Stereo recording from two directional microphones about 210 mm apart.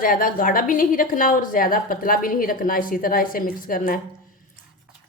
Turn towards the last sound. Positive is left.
turn(degrees=40)  # may be behind; listen again after turning